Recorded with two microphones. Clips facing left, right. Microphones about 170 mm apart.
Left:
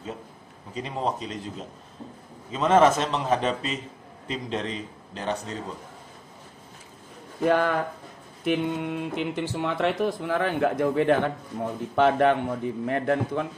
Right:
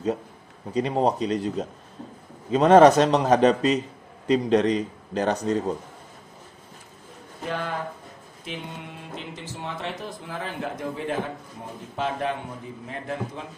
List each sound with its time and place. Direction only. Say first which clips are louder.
0.7 s a man's voice: right 7 dB; 35° right (ahead or behind)
7.4 s speech: left 8 dB; 60° left (ahead or behind)